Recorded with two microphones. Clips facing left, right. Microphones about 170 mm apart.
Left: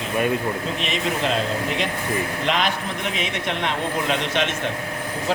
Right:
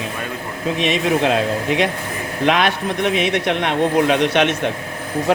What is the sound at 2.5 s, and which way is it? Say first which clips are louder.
A man's voice: right 8 dB; 65° right (ahead or behind).